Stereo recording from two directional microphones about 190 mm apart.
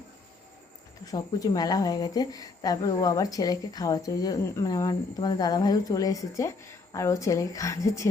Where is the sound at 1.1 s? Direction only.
20° left (ahead or behind).